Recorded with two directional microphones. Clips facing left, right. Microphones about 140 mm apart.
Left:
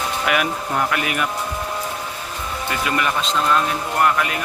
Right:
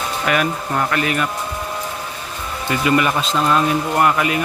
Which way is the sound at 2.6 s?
5° right (ahead or behind).